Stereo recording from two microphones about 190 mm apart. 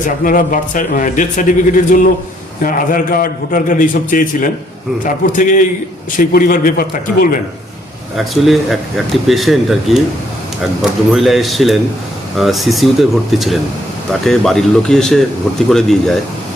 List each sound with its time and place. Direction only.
0.3 s a man's voice: 45° left (ahead or behind)
8.1 s speech: centre (ahead or behind)
11.1 s speech: centre (ahead or behind)